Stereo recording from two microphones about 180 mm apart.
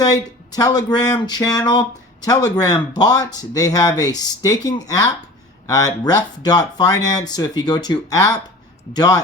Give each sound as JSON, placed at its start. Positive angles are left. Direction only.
{"t": 0.0, "sound": "speech", "side_deg": 20}